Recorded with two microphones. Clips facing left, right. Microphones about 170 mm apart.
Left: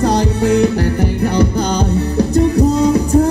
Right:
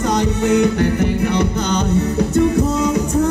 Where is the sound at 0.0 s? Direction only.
35° left (ahead or behind).